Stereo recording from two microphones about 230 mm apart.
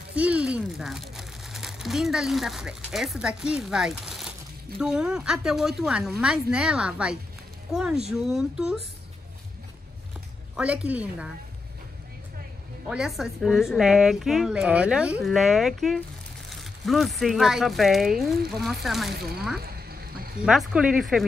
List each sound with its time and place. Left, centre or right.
0.1 s a woman's voice: centre
10.5 s a woman's voice: centre
12.8 s a woman's voice: centre
19.1 s speech: right
19.6 s a sound: right
20.4 s a woman's voice: centre